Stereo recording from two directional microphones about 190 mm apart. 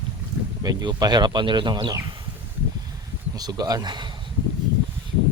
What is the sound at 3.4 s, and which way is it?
Speech, 20° right (ahead or behind).